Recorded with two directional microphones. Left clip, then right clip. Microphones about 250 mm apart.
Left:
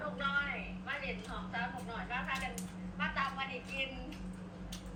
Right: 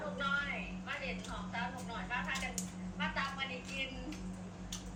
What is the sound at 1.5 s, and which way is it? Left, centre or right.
A woman's voice, centre.